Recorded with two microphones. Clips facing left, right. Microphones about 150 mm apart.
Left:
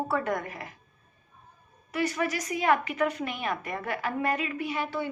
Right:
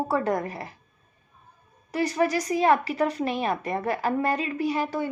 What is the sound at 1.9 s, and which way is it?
A woman's voice, 35° right (ahead or behind).